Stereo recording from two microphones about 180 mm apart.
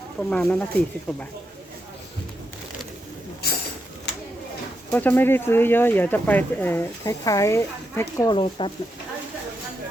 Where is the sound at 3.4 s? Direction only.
60° left (ahead or behind).